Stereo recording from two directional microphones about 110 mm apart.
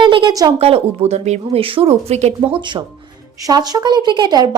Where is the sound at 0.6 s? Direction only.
70° right (ahead or behind).